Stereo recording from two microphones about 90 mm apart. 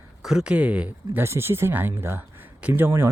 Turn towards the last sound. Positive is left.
turn(degrees=-25)  # may be behind; listen again after turning